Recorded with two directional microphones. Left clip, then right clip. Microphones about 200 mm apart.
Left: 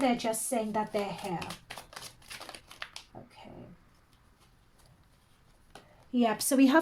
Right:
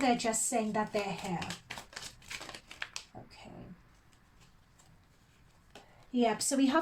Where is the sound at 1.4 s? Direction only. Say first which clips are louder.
Even; 15° left (ahead or behind).